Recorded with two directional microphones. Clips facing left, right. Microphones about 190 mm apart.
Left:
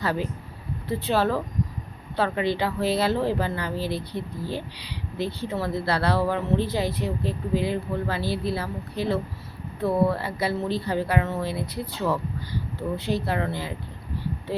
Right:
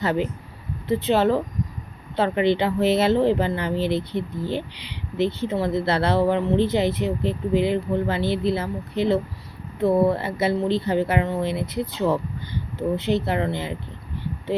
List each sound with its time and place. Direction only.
0.0 s speech: 20° right (ahead or behind)